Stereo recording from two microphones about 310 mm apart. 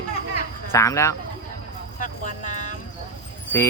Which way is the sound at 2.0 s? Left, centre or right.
Left.